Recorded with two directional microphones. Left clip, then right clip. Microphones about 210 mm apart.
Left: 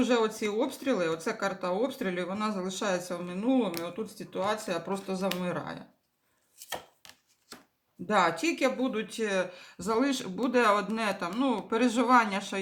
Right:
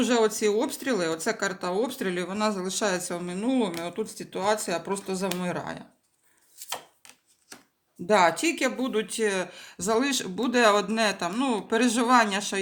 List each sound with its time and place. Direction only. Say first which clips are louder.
0.0 s speech: right 4 dB; 40° right (ahead or behind)
8.0 s speech: right 5 dB; 45° right (ahead or behind)